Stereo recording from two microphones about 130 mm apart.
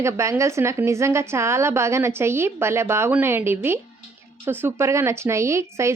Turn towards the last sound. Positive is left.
turn(degrees=-20)  # may be behind; listen again after turning